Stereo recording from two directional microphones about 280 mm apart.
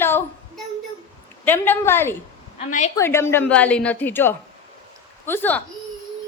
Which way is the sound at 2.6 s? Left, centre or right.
Left.